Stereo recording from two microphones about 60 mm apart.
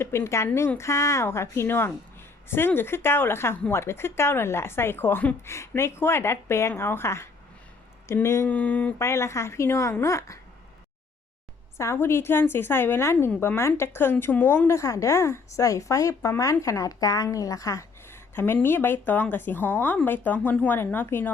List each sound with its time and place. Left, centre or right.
0.0 s a woman's voice: left
8.4 s a sound: left
9.0 s a woman's voice: left
11.9 s a woman's voice: left
14.7 s a woman's voice: left
17.3 s speech: left
18.1 s a woman's voice: left